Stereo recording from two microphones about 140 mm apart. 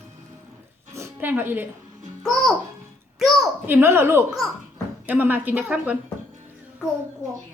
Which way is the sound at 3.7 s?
15° right (ahead or behind).